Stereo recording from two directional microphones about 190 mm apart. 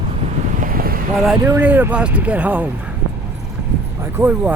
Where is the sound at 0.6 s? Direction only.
50° right (ahead or behind).